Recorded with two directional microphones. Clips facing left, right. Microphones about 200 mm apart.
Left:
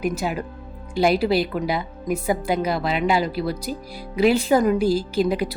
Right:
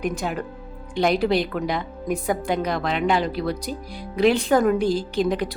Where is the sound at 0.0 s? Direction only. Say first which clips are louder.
Left 1 dB; 5° left (ahead or behind).